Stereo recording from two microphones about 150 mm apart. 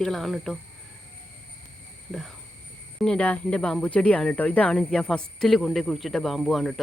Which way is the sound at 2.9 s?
5° left (ahead or behind).